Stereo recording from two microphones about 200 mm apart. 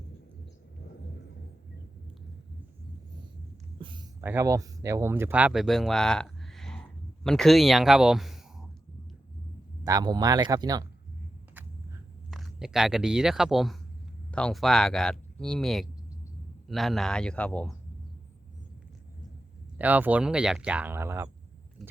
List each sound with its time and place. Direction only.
3.8 s a sound: 25° right (ahead or behind)
4.2 s speech: 10° right (ahead or behind)
9.8 s speech: 20° right (ahead or behind)
12.3 s speech: centre (ahead or behind)
19.8 s speech: 10° right (ahead or behind)